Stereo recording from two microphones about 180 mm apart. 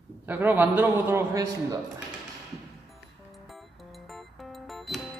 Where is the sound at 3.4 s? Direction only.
Centre (ahead or behind).